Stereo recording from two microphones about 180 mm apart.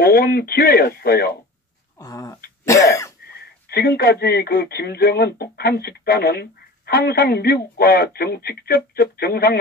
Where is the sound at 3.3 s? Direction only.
60° left (ahead or behind).